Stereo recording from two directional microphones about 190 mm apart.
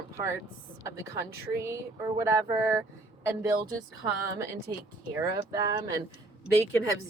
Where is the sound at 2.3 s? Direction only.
15° right (ahead or behind).